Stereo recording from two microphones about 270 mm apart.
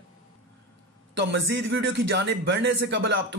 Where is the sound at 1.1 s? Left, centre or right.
Right.